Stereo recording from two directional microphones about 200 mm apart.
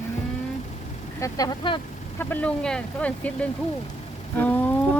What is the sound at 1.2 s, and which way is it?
Speech, 15° left (ahead or behind).